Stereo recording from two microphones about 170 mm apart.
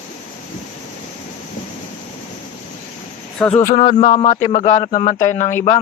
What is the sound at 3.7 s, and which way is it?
Speech, 40° left (ahead or behind).